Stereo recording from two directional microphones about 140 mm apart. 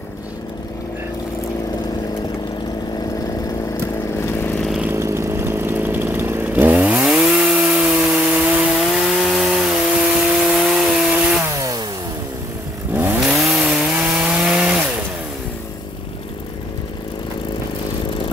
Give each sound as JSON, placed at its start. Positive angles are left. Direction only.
{"t": 4.2, "sound": "lawn mower", "side_deg": 20}
{"t": 4.6, "sound": "chainsaw", "side_deg": -5}
{"t": 4.9, "sound": "chainsaw", "side_deg": -20}
{"t": 11.5, "sound": "a sound", "side_deg": -25}
{"t": 12.9, "sound": "chainsaw", "side_deg": -10}